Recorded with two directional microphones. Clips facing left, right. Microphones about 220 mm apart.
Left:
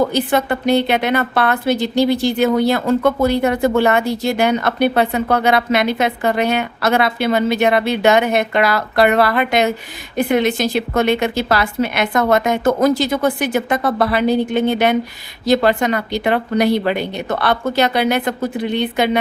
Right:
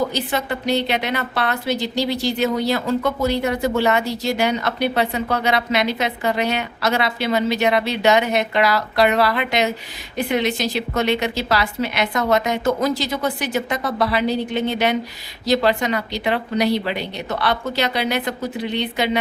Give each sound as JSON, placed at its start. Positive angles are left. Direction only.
{"t": 0.1, "sound": "a woman's voice", "side_deg": 55}